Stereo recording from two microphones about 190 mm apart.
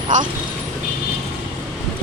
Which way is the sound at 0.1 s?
40° right (ahead or behind).